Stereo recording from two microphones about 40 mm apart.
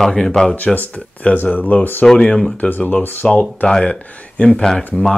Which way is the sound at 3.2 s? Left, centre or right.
Centre.